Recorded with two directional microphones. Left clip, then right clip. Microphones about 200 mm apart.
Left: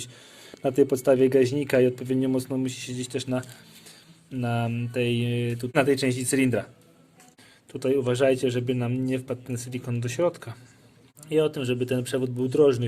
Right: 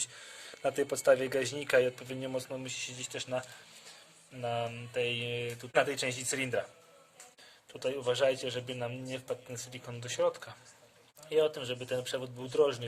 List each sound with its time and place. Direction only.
0.5 s a man's voice: 5° left (ahead or behind); by 6.7 s 25° left (ahead or behind)
7.7 s a man's voice: 25° left (ahead or behind)